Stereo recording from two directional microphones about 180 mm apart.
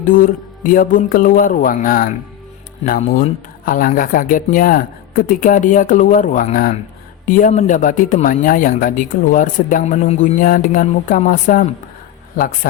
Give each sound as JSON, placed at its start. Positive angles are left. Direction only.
{"t": 0.0, "sound": "speech", "side_deg": 50}